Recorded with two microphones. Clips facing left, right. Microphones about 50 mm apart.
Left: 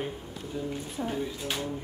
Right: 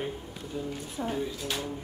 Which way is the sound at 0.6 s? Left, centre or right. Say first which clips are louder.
Left 1 dB; centre.